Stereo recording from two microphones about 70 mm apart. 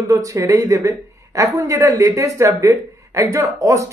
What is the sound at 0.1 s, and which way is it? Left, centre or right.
Speech, right.